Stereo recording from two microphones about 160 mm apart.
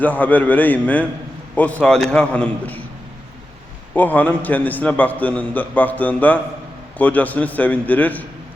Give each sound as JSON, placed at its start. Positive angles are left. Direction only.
{"t": 0.0, "sound": "a man's voice", "side_deg": 10}
{"t": 3.9, "sound": "a man's voice", "side_deg": 10}